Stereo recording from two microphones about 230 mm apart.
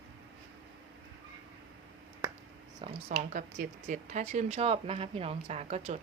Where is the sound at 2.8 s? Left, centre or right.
Right.